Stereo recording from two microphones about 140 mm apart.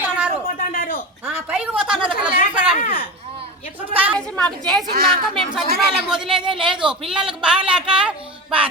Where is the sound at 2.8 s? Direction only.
90° left.